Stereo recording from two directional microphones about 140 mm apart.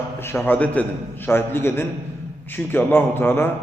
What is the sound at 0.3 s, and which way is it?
A man's voice, 15° left (ahead or behind).